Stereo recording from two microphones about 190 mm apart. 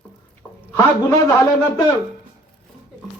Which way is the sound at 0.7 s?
15° left (ahead or behind).